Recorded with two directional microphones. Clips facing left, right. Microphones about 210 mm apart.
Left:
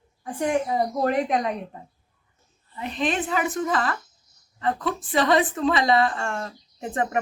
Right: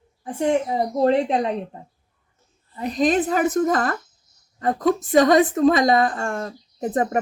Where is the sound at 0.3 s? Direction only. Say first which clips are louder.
Right 3 dB; 25° right (ahead or behind).